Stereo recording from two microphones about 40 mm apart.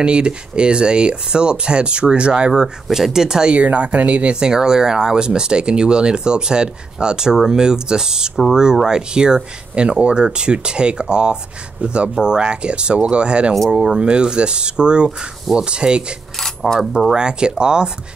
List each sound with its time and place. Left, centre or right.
0.0 s speech: right
2.5 s speech: centre
3.5 s speech: right
4.4 s speech: centre
16.3 s coin: centre
17.1 s speech: right